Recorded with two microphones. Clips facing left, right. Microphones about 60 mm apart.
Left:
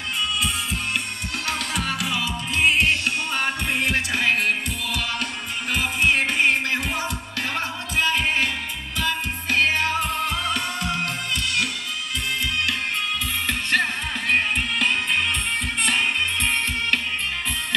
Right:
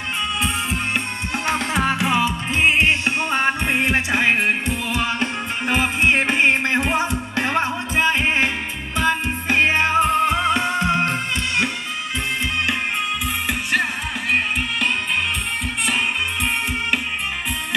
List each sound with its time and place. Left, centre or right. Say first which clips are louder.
1.4 s music: right 7 dB; right
13.5 s music: right 1 dB; centre